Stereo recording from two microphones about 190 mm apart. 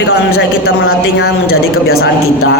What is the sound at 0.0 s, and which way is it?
Speech, 60° left (ahead or behind).